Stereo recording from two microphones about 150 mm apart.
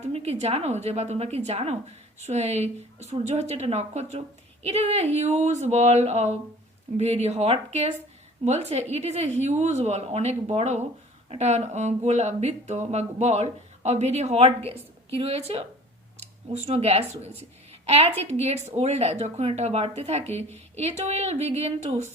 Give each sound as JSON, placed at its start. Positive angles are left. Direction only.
{"t": 0.0, "sound": "a woman's voice", "side_deg": -45}